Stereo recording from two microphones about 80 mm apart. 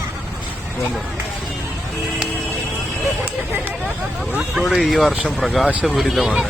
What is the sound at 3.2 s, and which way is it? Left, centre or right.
Speech, right.